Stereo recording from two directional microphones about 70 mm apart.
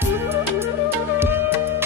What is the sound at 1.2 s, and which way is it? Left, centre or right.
Music, right.